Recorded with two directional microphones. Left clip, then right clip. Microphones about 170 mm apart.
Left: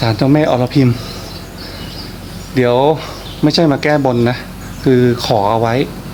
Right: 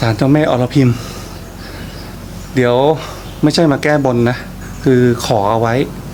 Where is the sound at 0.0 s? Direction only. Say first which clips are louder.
Even; centre (ahead or behind).